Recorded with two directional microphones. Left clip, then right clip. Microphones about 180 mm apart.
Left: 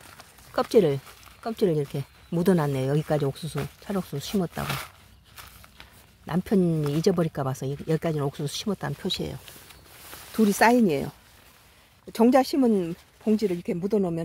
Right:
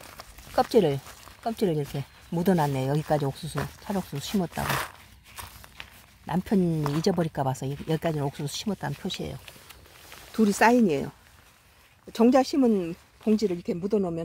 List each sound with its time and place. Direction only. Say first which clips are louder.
0.6 s speech: left 1 dB; 10° left (ahead or behind)
4.6 s speech: right 4 dB; 20° right (ahead or behind)
5.3 s walk: right 3 dB; 40° right (ahead or behind)
6.2 s speech: left 2 dB; 10° left (ahead or behind)
13.2 s speech: even; 5° left (ahead or behind)